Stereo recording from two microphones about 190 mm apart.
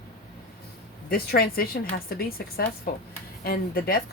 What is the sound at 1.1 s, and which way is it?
A woman's voice, 50° left (ahead or behind).